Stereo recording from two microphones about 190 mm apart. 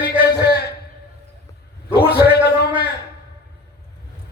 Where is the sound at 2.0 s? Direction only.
55° left (ahead or behind).